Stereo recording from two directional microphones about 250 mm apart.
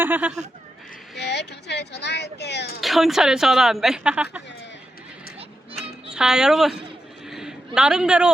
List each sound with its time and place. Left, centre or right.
0.0 s speech: centre
1.1 s speech: left
2.8 s a woman's voice: centre
6.1 s a woman's voice: centre
7.3 s a sound: centre